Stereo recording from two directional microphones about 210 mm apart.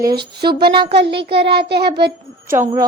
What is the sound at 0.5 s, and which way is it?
Speech, 50° right (ahead or behind).